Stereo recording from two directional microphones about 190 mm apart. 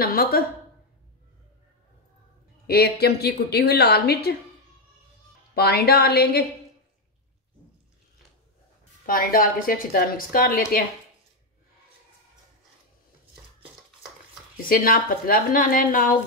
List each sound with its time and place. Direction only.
0.0 s a woman's voice: 50° left (ahead or behind)
2.6 s a woman's voice: 55° left (ahead or behind)
5.5 s a woman's voice: 55° left (ahead or behind)
9.0 s a woman's voice: 50° left (ahead or behind)
14.6 s a woman's voice: 50° left (ahead or behind)